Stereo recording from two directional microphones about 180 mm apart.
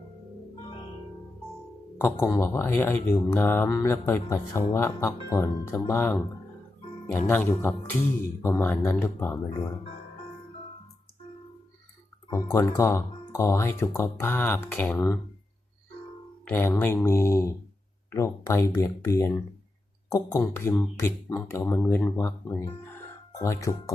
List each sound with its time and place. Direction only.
2.0 s speech: 10° left (ahead or behind)
7.3 s speech: 10° left (ahead or behind)
12.3 s speech: 15° left (ahead or behind)
16.5 s speech: 10° left (ahead or behind)